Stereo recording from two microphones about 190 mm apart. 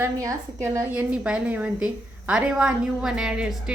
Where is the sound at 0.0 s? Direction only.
15° right (ahead or behind).